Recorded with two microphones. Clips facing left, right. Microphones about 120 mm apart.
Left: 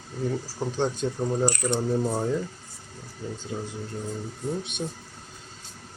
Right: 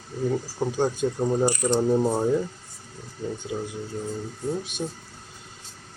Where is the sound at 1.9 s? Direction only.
20° right (ahead or behind).